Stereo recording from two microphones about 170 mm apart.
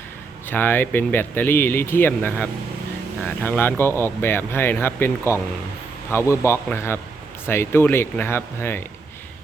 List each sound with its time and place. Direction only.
0.4 s speech: 10° left (ahead or behind)